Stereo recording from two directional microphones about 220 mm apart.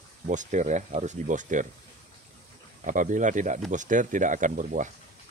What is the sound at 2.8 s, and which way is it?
Speech, 35° right (ahead or behind).